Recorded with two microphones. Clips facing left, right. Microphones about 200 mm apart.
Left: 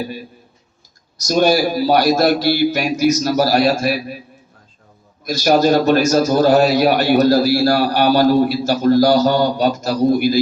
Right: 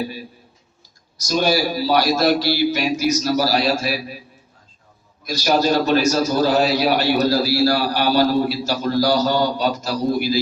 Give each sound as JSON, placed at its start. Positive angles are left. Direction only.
{"t": 1.3, "sound": "a man's voice", "side_deg": 50}
{"t": 5.2, "sound": "a man's voice", "side_deg": 50}